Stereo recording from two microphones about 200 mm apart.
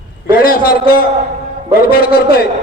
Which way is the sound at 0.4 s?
50° left (ahead or behind).